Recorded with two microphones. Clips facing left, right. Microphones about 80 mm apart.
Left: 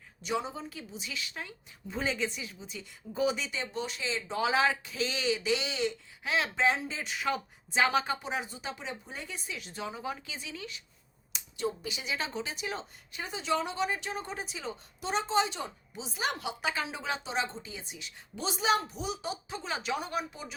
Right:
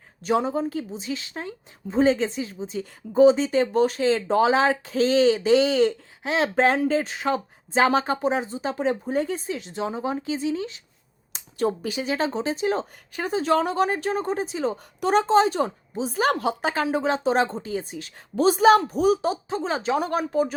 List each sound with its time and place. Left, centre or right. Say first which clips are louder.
0.2 s a woman's voice: right 11 dB; right
3.5 s a woman's voice: right 16 dB; right
4.4 s a woman's voice: right 7 dB; right
6.2 s speech: right 7 dB; right
6.6 s a woman's voice: right 9 dB; right
7.2 s a woman's voice: right 7 dB; right
8.7 s a woman's voice: right 17 dB; right
9.6 s speech: right 10 dB; right
11.5 s a woman's voice: right 10 dB; right
15.0 s a woman's voice: right 11 dB; right
20.0 s a woman's voice: right 13 dB; right